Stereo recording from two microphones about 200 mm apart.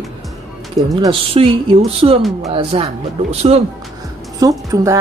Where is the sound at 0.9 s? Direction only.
25° right (ahead or behind).